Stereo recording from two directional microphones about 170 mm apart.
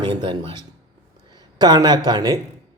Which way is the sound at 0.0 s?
30° right (ahead or behind).